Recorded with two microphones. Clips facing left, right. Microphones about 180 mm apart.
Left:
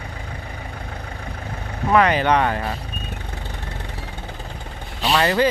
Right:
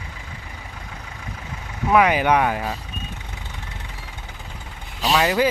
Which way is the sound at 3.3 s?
60° left (ahead or behind).